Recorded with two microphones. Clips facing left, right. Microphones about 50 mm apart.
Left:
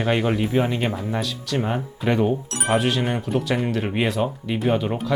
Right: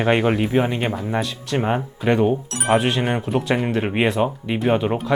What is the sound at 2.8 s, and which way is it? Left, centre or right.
Speech, right.